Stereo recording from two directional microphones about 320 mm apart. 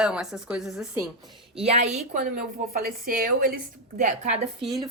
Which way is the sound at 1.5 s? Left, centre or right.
Centre.